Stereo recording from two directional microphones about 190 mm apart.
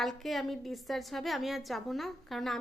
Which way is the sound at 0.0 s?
Centre (ahead or behind).